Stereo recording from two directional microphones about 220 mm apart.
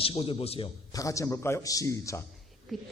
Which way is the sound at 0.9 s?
15° left (ahead or behind).